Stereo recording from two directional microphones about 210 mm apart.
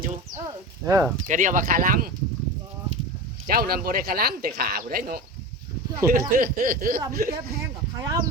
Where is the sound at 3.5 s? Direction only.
45° right (ahead or behind).